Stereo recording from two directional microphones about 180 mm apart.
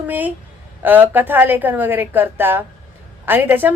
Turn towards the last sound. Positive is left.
turn(degrees=-10)  # may be behind; listen again after turning